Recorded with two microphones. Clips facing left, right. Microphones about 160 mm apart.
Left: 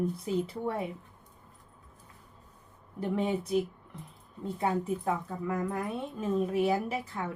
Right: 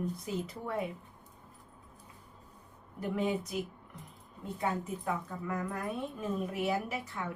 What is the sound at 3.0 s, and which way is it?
A woman's voice, 30° left (ahead or behind).